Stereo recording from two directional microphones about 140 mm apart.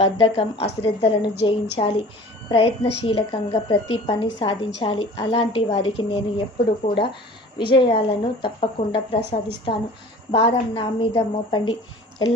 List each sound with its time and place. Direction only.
0.0 s a woman's voice: 45° left (ahead or behind)
7.6 s a woman's voice: 35° left (ahead or behind)